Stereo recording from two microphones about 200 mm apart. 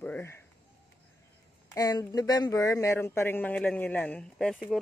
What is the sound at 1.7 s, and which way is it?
Speech, 15° left (ahead or behind).